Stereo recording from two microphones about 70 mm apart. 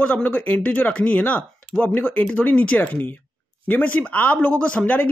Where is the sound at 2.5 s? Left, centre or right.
Left.